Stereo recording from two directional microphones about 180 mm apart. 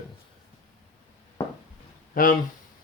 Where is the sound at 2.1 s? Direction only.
50° left (ahead or behind).